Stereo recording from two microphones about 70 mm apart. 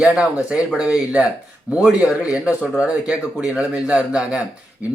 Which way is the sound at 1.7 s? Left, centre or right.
Right.